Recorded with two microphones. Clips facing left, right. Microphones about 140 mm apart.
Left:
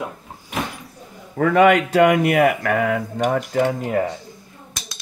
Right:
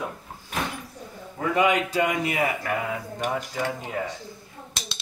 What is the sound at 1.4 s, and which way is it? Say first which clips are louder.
Speech: left 8 dB; 70° left (ahead or behind).